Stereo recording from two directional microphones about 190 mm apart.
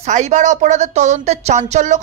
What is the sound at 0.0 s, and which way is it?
Speech, 40° right (ahead or behind).